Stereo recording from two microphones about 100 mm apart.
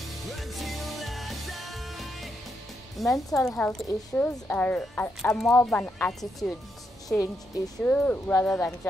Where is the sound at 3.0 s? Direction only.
Centre (ahead or behind).